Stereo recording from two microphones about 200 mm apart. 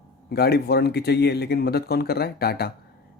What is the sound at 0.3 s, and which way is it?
Speech, 50° left (ahead or behind).